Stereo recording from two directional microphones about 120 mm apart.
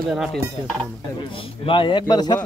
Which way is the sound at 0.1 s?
5° right (ahead or behind).